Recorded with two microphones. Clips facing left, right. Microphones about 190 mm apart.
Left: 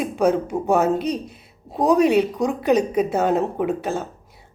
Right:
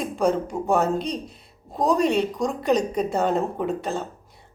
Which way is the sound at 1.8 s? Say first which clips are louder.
Left 4 dB; 65° left (ahead or behind).